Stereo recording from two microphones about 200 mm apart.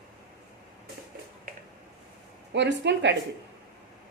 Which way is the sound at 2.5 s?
60° right (ahead or behind).